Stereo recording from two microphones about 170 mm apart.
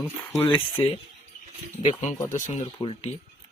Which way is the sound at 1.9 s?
45° left (ahead or behind).